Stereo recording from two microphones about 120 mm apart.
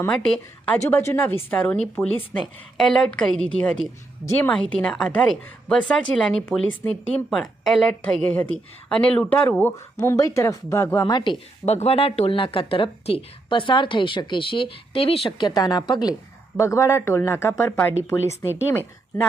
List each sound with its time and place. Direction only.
0.1 s a woman's voice: 5° left (ahead or behind)
0.9 s a woman's voice: 20° left (ahead or behind); by 6.4 s 5° left (ahead or behind)
6.8 s a woman's voice: 15° left (ahead or behind)
7.3 s a woman's voice: centre (ahead or behind); by 11.3 s 35° left (ahead or behind)
11.6 s speech: 65° left (ahead or behind)
15.4 s a woman's voice: 35° left (ahead or behind)
16.6 s speech: 25° left (ahead or behind)